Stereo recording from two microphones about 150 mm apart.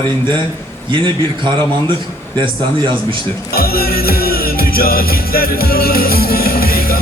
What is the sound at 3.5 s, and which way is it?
Music, 90° left.